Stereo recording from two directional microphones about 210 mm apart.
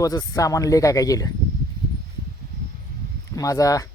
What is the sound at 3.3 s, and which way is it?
Speech, 15° left (ahead or behind).